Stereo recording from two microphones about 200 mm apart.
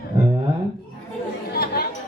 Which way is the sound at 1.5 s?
50° left (ahead or behind).